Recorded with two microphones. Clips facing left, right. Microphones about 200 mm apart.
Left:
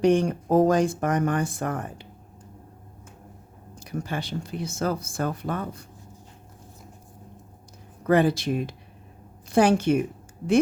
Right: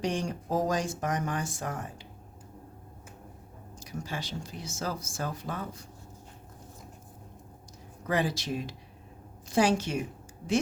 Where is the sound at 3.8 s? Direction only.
60° left (ahead or behind).